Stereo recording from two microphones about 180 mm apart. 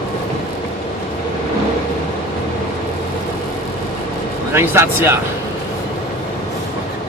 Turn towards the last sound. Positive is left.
turn(degrees=-15)  # may be behind; listen again after turning